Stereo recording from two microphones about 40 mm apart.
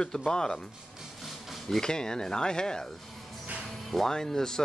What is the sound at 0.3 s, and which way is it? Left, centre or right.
Speech, centre.